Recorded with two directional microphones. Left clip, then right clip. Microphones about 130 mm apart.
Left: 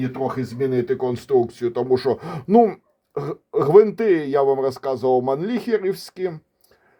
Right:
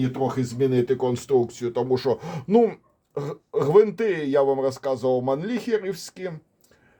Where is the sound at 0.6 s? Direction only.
25° left (ahead or behind).